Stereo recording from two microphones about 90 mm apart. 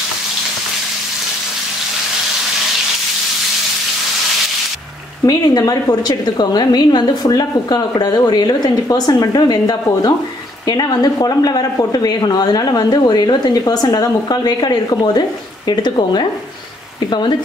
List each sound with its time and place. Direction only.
5.2 s a woman's voice: 45° left (ahead or behind); by 17.4 s 60° left (ahead or behind)